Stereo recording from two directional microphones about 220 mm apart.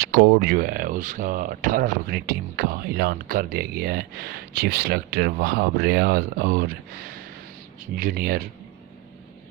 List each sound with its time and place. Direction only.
0.0 s speech: 45° right (ahead or behind)